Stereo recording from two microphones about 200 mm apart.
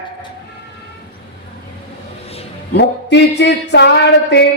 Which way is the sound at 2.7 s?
60° left (ahead or behind).